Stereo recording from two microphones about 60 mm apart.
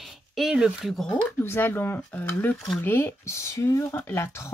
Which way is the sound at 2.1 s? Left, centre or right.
Left.